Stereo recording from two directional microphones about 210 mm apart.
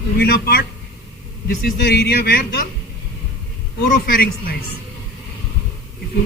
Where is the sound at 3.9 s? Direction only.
45° left (ahead or behind).